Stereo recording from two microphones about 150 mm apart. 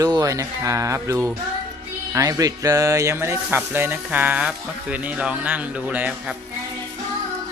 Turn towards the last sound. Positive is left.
turn(degrees=-10)  # may be behind; listen again after turning